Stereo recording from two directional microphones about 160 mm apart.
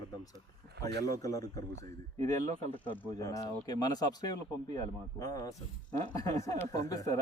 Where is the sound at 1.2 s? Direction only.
20° left (ahead or behind).